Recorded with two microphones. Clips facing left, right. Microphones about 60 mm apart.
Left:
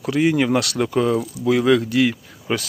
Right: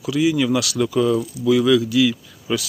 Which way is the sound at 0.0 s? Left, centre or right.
Left.